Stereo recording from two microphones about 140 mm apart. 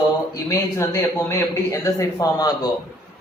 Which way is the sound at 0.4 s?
20° left (ahead or behind).